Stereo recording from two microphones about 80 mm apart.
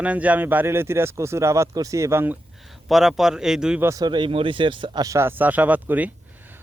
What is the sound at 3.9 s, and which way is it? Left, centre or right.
Speech, right.